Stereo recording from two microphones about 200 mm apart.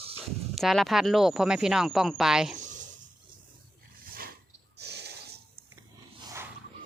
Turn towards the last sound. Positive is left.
turn(degrees=-10)  # may be behind; listen again after turning